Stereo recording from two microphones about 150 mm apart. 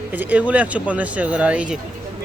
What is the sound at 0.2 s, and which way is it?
Speech, 10° right (ahead or behind).